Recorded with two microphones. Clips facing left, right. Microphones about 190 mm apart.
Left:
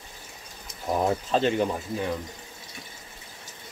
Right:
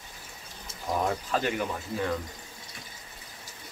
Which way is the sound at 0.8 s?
25° left (ahead or behind).